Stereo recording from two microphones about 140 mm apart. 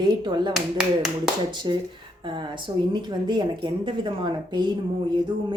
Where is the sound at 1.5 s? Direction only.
35° right (ahead or behind).